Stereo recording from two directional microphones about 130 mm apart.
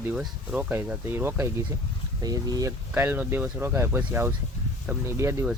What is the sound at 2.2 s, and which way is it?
Speech, 30° right (ahead or behind).